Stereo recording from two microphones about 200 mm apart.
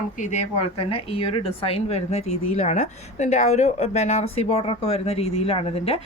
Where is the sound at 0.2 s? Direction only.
35° left (ahead or behind).